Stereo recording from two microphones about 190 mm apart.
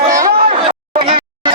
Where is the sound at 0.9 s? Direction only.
25° right (ahead or behind).